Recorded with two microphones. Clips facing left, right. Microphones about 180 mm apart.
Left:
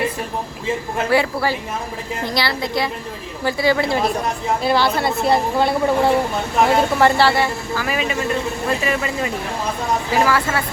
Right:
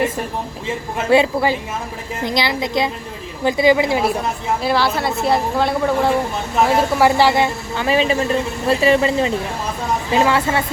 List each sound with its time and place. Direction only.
1.1 s a woman's voice: 20° right (ahead or behind)
4.6 s a woman's voice: centre (ahead or behind)
7.2 s speech: 15° right (ahead or behind)